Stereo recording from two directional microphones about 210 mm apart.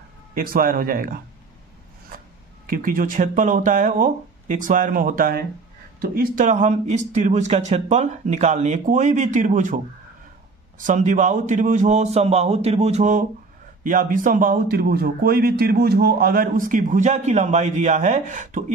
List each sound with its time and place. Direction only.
0.3 s a man's voice: 45° right (ahead or behind)
10.8 s a man's voice: 35° right (ahead or behind)